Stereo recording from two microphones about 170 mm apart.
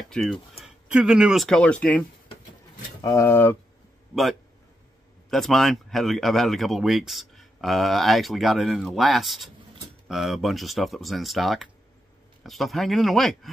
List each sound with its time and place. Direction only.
0.1 s speech: centre (ahead or behind)
3.0 s speech: 20° left (ahead or behind)
4.1 s a man's voice: centre (ahead or behind)